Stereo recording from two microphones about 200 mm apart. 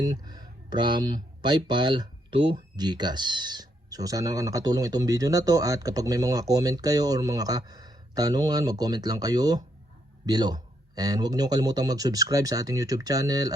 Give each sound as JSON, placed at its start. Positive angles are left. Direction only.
{"t": 0.0, "sound": "speech", "side_deg": -20}